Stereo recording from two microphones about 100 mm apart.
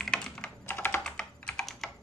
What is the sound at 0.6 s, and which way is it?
Computer keyboard, 20° left (ahead or behind).